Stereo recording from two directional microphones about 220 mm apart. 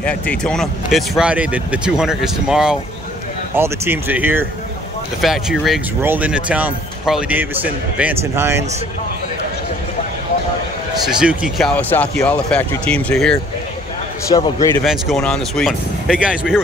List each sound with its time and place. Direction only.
0.0 s speech: 5° left (ahead or behind); by 8.6 s 10° right (ahead or behind)
11.1 s speech: 5° right (ahead or behind)
14.3 s a man's voice: 15° left (ahead or behind)
14.8 s speech: centre (ahead or behind)